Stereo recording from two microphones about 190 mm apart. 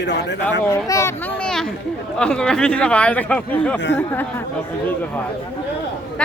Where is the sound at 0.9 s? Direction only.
15° left (ahead or behind).